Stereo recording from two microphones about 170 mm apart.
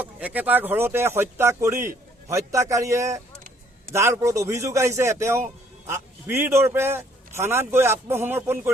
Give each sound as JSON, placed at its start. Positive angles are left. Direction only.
{"t": 0.0, "sound": "a man's voice", "side_deg": -10}